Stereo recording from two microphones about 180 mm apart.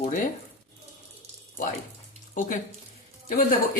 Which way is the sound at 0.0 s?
50° left (ahead or behind).